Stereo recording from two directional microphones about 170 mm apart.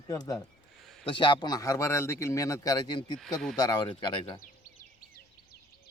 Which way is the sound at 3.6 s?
25° left (ahead or behind).